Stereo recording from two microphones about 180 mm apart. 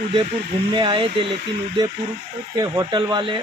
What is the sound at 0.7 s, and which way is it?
Speech, 30° right (ahead or behind).